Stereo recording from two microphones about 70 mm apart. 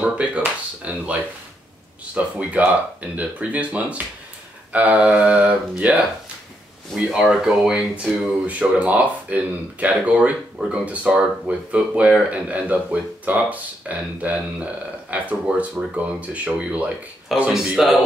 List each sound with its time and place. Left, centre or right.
0.0 s speech: centre
2.1 s speech: centre
7.1 s speech: centre
17.5 s a man's voice: centre